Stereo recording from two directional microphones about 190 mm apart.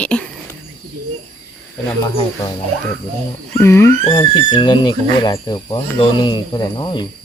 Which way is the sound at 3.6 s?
15° left (ahead or behind).